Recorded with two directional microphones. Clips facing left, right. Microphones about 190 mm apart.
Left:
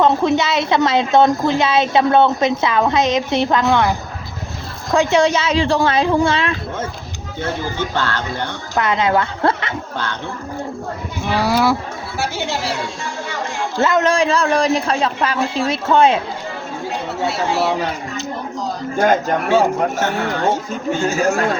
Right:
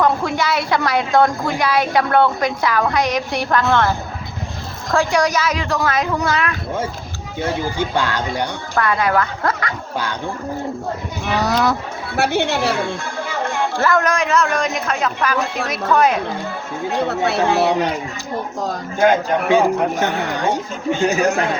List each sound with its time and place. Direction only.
0.0 s a woman's voice: 20° left (ahead or behind)
7.3 s speech: 10° right (ahead or behind)
8.7 s a woman's voice: 20° left (ahead or behind)
11.3 s speech: 10° left (ahead or behind)
12.1 s a woman's voice: 60° right (ahead or behind)
13.7 s a woman's voice: 20° left (ahead or behind)
17.2 s speech: 60° right (ahead or behind)
19.5 s speech: 15° right (ahead or behind)